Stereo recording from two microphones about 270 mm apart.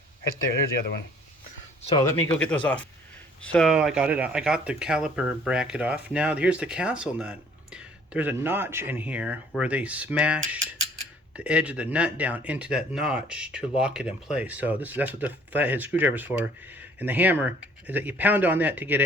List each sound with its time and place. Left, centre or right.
1.8 s speech: centre
2.0 s speech: centre